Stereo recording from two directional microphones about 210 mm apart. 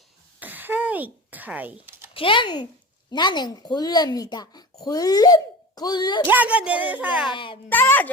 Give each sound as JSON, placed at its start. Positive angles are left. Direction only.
{"t": 0.3, "sound": "a sound", "side_deg": -10}
{"t": 2.1, "sound": "speech", "side_deg": 25}
{"t": 6.2, "sound": "speech", "side_deg": -10}
{"t": 7.3, "sound": "speech", "side_deg": 25}
{"t": 7.7, "sound": "a child's voice", "side_deg": 10}